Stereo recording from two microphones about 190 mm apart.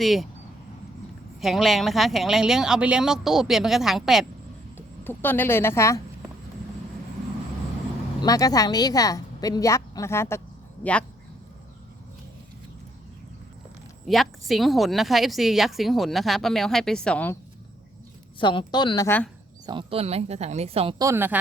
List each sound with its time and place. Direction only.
0.0 s a woman's voice: centre (ahead or behind)
1.4 s a woman's voice: centre (ahead or behind)
5.0 s a woman's voice: 10° left (ahead or behind)
8.2 s a woman's voice: 20° left (ahead or behind)
14.1 s a woman's voice: centre (ahead or behind)
18.3 s a woman's voice: 25° left (ahead or behind)
19.6 s speech: 25° right (ahead or behind)
21.0 s speech: 15° right (ahead or behind)